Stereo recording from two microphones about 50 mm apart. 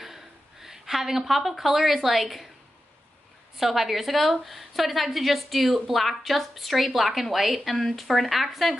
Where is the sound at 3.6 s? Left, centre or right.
Centre.